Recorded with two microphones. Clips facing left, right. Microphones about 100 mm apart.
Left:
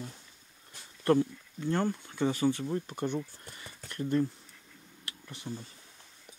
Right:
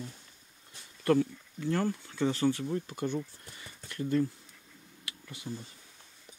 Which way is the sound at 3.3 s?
30° left (ahead or behind).